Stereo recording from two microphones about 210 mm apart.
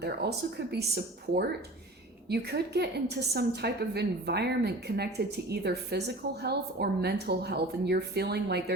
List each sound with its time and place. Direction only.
0.0 s a woman's voice: 50° right (ahead or behind)